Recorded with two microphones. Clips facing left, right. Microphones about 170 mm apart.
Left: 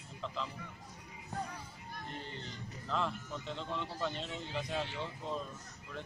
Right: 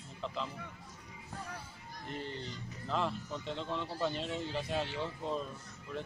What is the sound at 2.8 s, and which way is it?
Speech, 5° right (ahead or behind).